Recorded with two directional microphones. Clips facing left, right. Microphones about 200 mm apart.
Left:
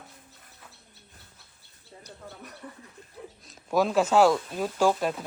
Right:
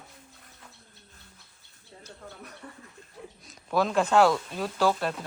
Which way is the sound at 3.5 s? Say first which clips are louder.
Left 2 dB; 5° left (ahead or behind).